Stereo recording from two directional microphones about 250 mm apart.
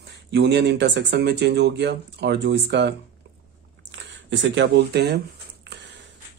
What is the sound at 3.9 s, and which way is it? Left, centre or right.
Speech, right.